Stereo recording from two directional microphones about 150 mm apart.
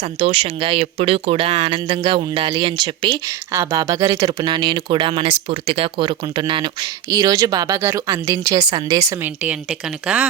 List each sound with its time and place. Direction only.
0.0 s speech: 40° right (ahead or behind)
3.2 s speech: 20° right (ahead or behind)
9.4 s speech: 5° right (ahead or behind)